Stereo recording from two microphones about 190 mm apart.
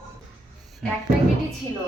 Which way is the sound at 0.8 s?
5° left (ahead or behind).